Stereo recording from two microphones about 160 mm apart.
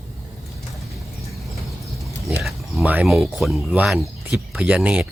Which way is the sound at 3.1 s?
Centre (ahead or behind).